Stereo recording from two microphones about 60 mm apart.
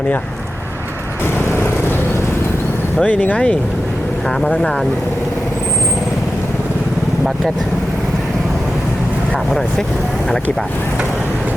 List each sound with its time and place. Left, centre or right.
3.0 s speech: left
9.5 s speech: centre